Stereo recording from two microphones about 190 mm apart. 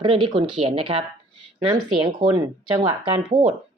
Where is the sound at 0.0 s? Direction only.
25° right (ahead or behind).